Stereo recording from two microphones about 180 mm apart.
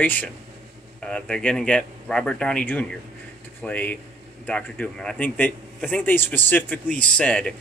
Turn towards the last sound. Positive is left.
turn(degrees=5)  # may be behind; listen again after turning